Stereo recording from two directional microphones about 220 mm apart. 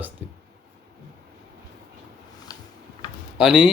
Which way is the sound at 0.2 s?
10° right (ahead or behind).